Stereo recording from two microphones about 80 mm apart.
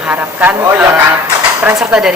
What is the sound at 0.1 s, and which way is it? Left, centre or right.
Speech, right.